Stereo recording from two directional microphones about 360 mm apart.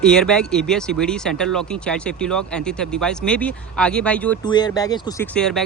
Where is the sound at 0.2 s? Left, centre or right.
Centre.